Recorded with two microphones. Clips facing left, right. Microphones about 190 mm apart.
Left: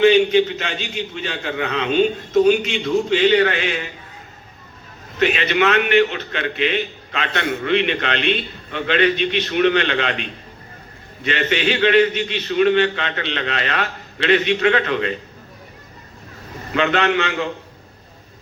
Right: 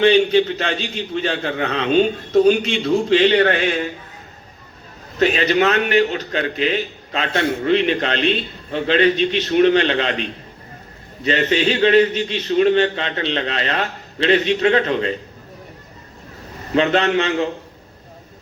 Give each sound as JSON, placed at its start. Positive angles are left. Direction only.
{"t": 0.0, "sound": "a man's voice", "side_deg": -35}
{"t": 5.2, "sound": "a man's voice", "side_deg": -35}
{"t": 16.7, "sound": "a man's voice", "side_deg": -35}